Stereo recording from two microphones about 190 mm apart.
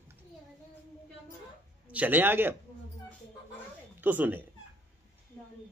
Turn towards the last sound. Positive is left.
turn(degrees=-10)  # may be behind; listen again after turning